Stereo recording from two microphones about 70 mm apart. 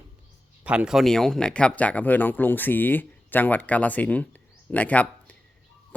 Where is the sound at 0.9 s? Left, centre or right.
Centre.